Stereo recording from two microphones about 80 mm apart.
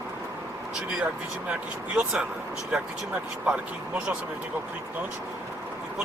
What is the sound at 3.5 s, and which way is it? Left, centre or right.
Speech, centre.